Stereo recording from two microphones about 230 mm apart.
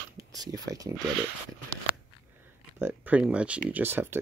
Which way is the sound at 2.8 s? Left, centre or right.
Centre.